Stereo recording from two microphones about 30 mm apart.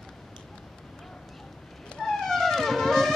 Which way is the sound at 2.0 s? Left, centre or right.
Centre.